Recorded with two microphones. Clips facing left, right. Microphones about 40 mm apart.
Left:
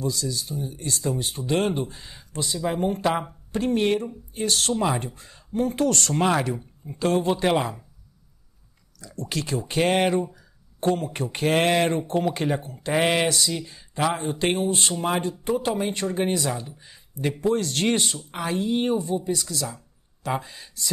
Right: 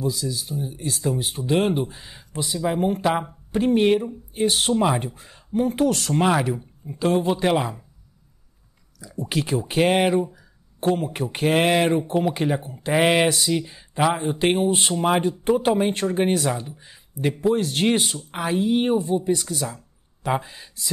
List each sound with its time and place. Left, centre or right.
0.0 s speech: centre
9.0 s speech: centre
16.5 s speech: centre